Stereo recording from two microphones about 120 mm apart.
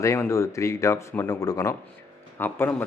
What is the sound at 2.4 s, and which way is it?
Speech, 15° left (ahead or behind).